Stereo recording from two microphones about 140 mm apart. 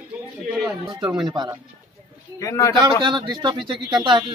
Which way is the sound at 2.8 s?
35° right (ahead or behind).